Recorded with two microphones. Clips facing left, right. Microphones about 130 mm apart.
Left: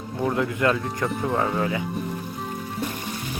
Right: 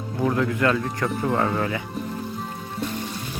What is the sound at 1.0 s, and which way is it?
Speech, centre (ahead or behind).